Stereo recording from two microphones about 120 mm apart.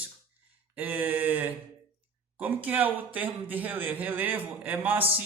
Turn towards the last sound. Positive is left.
turn(degrees=-15)  # may be behind; listen again after turning